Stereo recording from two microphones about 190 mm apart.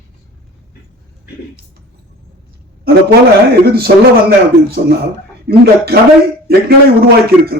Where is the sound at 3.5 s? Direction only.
55° right (ahead or behind).